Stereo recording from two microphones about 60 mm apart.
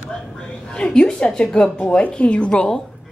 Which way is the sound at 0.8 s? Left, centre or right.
Centre.